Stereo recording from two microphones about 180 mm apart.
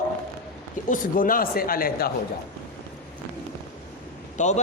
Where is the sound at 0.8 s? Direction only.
45° left (ahead or behind).